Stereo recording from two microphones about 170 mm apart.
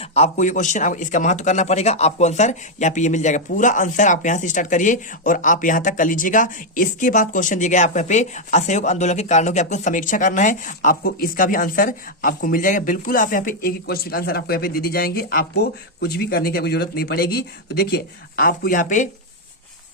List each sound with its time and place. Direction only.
0.1 s a man's voice: 40° left (ahead or behind)